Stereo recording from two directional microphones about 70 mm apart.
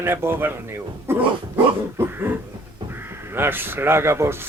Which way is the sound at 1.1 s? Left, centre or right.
Right.